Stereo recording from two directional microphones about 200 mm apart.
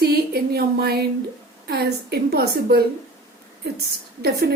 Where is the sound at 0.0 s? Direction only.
50° right (ahead or behind).